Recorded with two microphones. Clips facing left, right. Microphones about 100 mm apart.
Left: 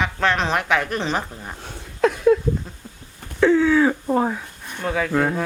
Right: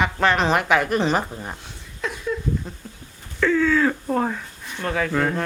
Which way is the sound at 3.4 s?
20° left (ahead or behind).